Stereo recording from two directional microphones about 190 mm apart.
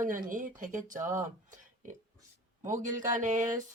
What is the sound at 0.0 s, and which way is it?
Speech, 45° right (ahead or behind).